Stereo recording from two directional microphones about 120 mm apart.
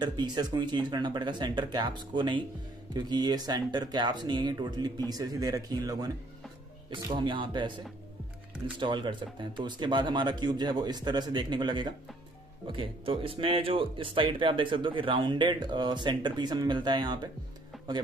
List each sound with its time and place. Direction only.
0.0 s speech: 40° right (ahead or behind)
7.1 s speech: 40° right (ahead or behind)
17.7 s music: centre (ahead or behind)